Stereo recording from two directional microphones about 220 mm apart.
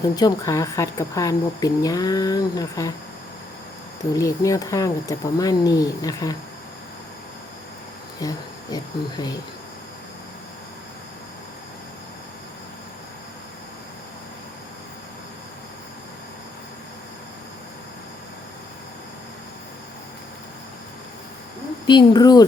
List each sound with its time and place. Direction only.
0.2 s a woman's voice: 15° left (ahead or behind)
4.1 s a woman's voice: 15° left (ahead or behind)
8.2 s a woman's voice: 15° left (ahead or behind)
21.8 s speech: 20° left (ahead or behind)